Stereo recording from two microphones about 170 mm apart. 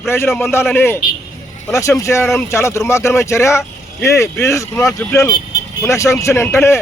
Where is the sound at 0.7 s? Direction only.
15° left (ahead or behind).